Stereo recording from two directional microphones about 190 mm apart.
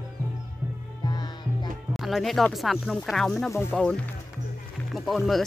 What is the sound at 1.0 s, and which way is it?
Music, 20° left (ahead or behind).